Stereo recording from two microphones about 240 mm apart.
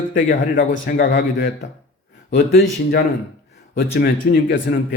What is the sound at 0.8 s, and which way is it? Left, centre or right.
Speech, left.